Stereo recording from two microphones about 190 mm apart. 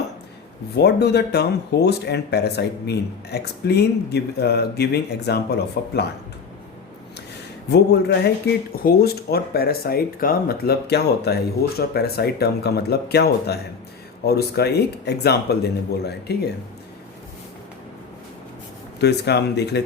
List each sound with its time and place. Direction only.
0.8 s speech: 60° left (ahead or behind)
7.7 s speech: 60° left (ahead or behind)
8.7 s speech: 50° left (ahead or behind)
18.9 s speech: 60° left (ahead or behind)